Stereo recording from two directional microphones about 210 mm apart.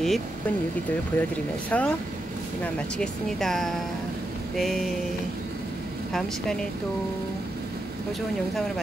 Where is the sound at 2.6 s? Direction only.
5° left (ahead or behind).